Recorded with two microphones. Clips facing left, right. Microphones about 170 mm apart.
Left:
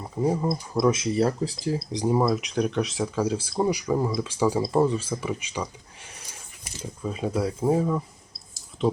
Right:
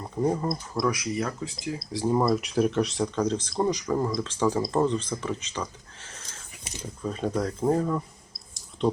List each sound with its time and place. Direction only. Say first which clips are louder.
0.0 s speech: left 1 dB; 5° left (ahead or behind)
0.8 s speech: left 6 dB; 25° left (ahead or behind)
1.9 s speech: right 1 dB; 20° left (ahead or behind)
2.1 s speech: right 1 dB; centre (ahead or behind)